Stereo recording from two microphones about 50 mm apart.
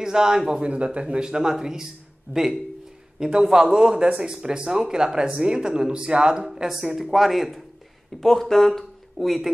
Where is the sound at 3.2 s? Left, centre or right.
Centre.